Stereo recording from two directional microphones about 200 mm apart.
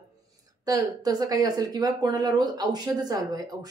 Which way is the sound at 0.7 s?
20° right (ahead or behind).